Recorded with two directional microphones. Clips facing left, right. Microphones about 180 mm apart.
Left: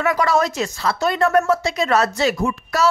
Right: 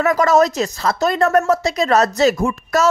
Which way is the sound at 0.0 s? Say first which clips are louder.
Right 4 dB; 40° right (ahead or behind).